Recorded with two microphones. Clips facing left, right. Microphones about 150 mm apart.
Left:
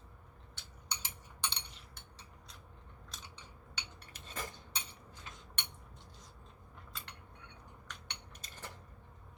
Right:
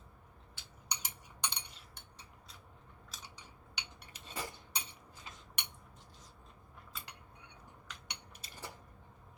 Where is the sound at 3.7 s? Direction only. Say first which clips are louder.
Even; 10° right (ahead or behind).